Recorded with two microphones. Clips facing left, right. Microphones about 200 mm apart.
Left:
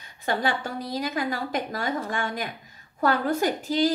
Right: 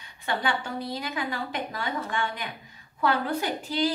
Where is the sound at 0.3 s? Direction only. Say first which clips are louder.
Left 2 dB; 40° left (ahead or behind).